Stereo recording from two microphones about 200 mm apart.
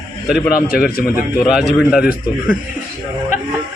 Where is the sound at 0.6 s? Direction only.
50° left (ahead or behind).